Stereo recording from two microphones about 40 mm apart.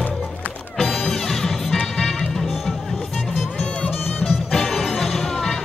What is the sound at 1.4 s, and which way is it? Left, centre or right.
Music, centre.